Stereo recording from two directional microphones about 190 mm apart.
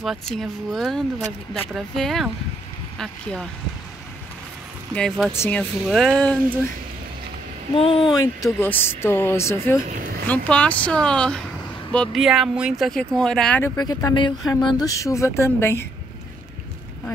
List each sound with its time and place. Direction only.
0.0 s speech: centre (ahead or behind)
4.9 s speech: centre (ahead or behind)
7.7 s speech: 30° left (ahead or behind)
8.5 s speech: 10° left (ahead or behind)
9.8 s a sound: 50° right (ahead or behind)
10.2 s speech: 5° left (ahead or behind)
13.7 s speech: 20° left (ahead or behind)